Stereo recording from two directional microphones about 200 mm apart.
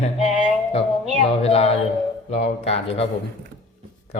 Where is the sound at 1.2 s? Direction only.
30° left (ahead or behind).